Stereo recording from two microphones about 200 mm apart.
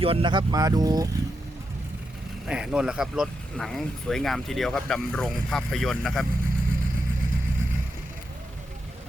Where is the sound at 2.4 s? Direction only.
5° right (ahead or behind).